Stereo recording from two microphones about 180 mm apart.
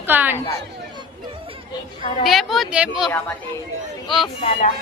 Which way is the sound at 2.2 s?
Centre (ahead or behind).